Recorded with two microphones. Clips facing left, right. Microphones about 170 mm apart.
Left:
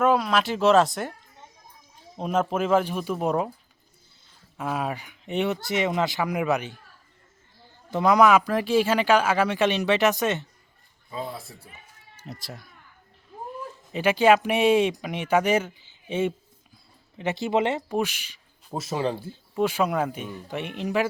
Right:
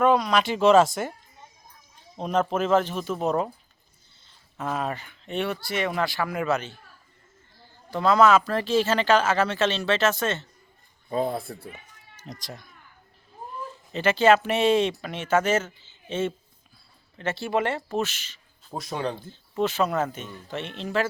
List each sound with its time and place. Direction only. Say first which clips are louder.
0.0 s speech: right 1 dB; 5° left (ahead or behind)
2.1 s speech: even; 5° left (ahead or behind)
4.5 s speech: even; 10° left (ahead or behind)
7.9 s speech: left 1 dB; 15° left (ahead or behind)
11.1 s speech: right 8 dB; 50° right (ahead or behind)
12.1 s speech: even; 5° left (ahead or behind)
13.9 s speech: even; 10° left (ahead or behind)